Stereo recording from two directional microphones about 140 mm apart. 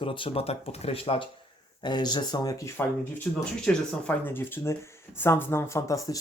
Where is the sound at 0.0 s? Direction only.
40° left (ahead or behind).